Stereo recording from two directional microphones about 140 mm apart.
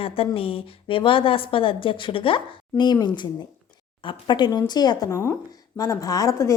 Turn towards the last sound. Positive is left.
turn(degrees=20)  # may be behind; listen again after turning